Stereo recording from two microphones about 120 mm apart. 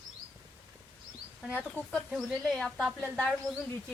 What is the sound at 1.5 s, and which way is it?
Speech, 10° left (ahead or behind).